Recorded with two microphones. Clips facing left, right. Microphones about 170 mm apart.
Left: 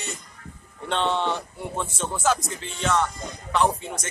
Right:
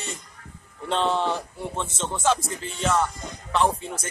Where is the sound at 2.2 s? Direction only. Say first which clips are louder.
Right 1 dB; 25° right (ahead or behind).